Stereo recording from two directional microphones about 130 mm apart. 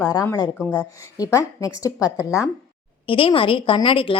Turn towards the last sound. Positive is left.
turn(degrees=40)  # may be behind; listen again after turning